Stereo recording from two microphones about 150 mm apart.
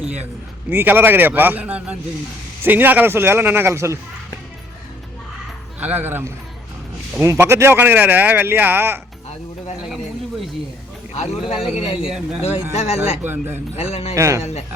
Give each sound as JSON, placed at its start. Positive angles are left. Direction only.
{"t": 0.7, "sound": "speech", "side_deg": -15}
{"t": 5.8, "sound": "speech", "side_deg": -10}
{"t": 11.1, "sound": "a sound", "side_deg": 45}
{"t": 11.5, "sound": "speech", "side_deg": -5}
{"t": 12.4, "sound": "a man's voice", "side_deg": 40}
{"t": 14.2, "sound": "speech", "side_deg": -20}